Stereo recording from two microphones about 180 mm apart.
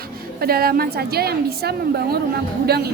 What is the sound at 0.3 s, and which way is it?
A woman's voice, 55° right (ahead or behind).